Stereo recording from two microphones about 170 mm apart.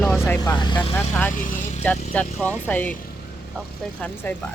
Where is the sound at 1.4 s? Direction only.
50° left (ahead or behind).